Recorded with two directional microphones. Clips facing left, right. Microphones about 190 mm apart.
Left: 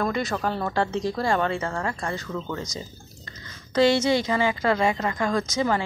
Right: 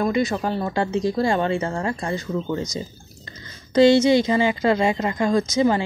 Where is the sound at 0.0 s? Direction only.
15° right (ahead or behind).